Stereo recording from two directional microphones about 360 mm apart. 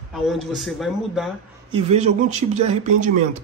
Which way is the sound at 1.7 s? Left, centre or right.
Centre.